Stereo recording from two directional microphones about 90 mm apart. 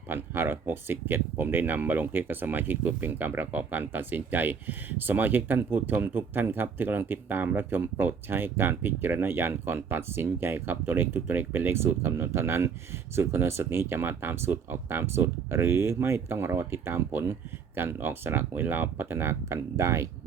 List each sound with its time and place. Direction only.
0.1 s speech: 25° right (ahead or behind)